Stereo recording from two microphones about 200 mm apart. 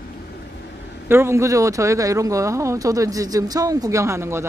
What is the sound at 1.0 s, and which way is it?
A woman's voice, 10° right (ahead or behind).